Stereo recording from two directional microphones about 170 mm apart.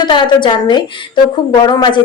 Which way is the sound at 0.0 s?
25° left (ahead or behind).